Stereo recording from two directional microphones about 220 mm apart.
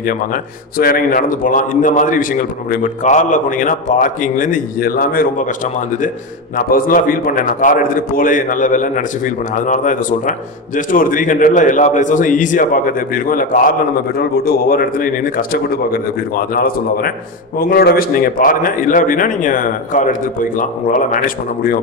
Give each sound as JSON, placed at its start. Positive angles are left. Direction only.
{"t": 0.0, "sound": "a man's voice", "side_deg": 40}